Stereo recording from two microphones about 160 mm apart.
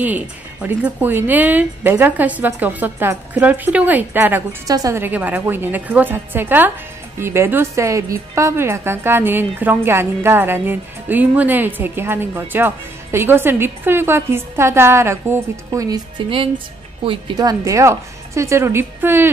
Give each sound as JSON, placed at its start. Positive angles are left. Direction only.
{"t": 0.0, "sound": "a woman's voice", "side_deg": -10}